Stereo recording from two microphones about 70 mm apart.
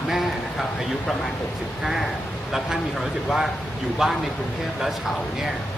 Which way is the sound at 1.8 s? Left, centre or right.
Centre.